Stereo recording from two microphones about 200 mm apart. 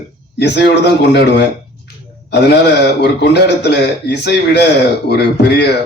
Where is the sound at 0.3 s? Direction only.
60° left (ahead or behind).